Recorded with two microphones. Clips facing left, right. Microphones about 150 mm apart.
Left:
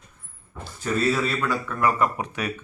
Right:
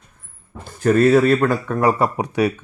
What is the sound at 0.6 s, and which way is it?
Speech, 55° right (ahead or behind).